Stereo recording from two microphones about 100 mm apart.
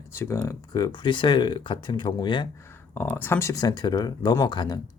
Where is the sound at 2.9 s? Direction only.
20° left (ahead or behind).